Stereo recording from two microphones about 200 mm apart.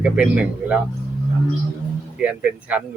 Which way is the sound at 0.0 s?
5° right (ahead or behind).